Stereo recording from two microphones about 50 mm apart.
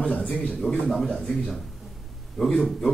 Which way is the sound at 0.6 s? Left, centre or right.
Centre.